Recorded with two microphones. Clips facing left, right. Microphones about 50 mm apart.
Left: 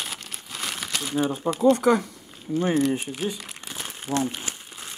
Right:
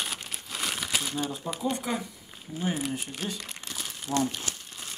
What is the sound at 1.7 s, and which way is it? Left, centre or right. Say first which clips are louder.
Speech: left 11 dB; left.